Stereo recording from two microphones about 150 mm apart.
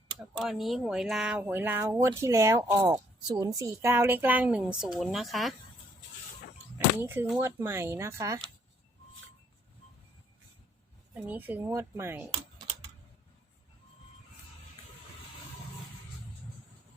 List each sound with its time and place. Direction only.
0.3 s speech: centre (ahead or behind)
6.7 s a sound: 15° right (ahead or behind)
7.4 s speech: 15° right (ahead or behind)
11.1 s speech: 10° right (ahead or behind)